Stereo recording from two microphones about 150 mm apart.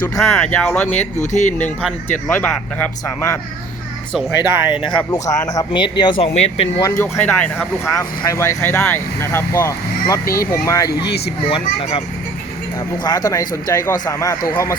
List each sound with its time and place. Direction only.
0.2 s speech: 5° left (ahead or behind)
1.2 s speech: 55° left (ahead or behind)
2.0 s speech: 10° left (ahead or behind)
4.4 s speech: 15° right (ahead or behind)
4.8 s speech: 5° left (ahead or behind)
5.1 s speech: 25° left (ahead or behind)
6.8 s speech: 15° left (ahead or behind)
10.2 s speech: 75° left (ahead or behind)
10.5 s speech: 20° left (ahead or behind)
11.8 s speech: 40° left (ahead or behind)
13.1 s speech: 20° left (ahead or behind)